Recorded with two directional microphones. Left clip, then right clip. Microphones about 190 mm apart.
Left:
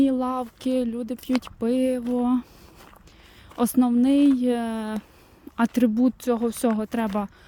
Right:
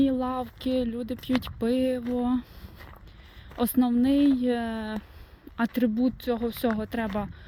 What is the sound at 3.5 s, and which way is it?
Speech, 35° left (ahead or behind).